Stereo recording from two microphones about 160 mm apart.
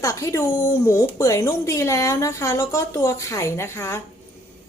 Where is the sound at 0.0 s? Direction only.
20° left (ahead or behind).